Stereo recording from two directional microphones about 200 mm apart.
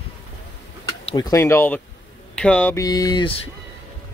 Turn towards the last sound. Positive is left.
turn(degrees=25)  # may be behind; listen again after turning